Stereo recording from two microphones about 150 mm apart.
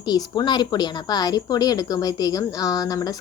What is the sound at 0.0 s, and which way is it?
A woman's voice, 25° left (ahead or behind).